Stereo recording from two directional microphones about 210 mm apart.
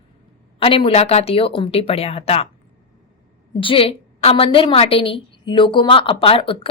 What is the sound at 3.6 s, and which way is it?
A woman's voice, 25° left (ahead or behind).